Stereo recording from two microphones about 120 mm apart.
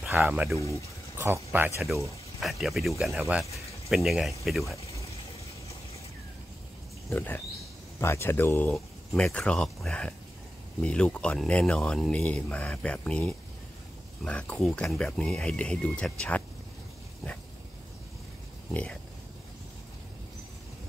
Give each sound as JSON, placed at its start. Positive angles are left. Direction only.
{"t": 0.6, "sound": "speech", "side_deg": 25}
{"t": 1.1, "sound": "speech", "side_deg": -20}
{"t": 2.4, "sound": "speech", "side_deg": 0}
{"t": 7.1, "sound": "speech", "side_deg": 20}
{"t": 8.7, "sound": "speech", "side_deg": 5}
{"t": 18.7, "sound": "speech", "side_deg": 10}